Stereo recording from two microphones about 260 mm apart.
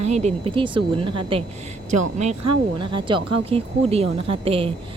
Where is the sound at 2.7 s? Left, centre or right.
Centre.